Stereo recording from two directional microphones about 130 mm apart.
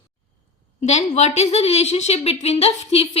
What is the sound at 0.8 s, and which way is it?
A woman's voice, 60° left (ahead or behind).